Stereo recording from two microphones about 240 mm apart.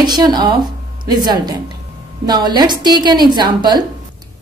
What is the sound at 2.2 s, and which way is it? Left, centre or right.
Speech, centre.